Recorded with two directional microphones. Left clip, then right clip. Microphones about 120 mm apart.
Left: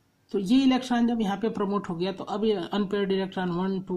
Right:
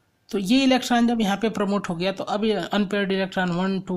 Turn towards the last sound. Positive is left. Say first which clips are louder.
# right 3 dB
turn(degrees=-25)  # may be behind; listen again after turning